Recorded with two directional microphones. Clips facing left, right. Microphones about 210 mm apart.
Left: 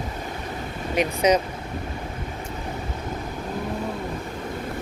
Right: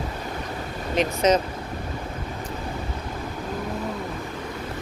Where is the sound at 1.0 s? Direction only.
10° left (ahead or behind).